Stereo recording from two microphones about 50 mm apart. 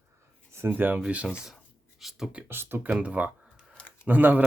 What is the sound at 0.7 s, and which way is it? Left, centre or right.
Speech, right.